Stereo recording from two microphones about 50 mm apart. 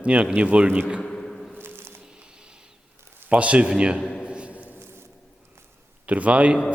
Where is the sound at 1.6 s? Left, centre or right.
Right.